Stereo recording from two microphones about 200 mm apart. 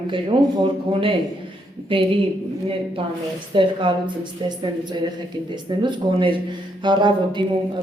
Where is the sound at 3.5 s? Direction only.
25° right (ahead or behind).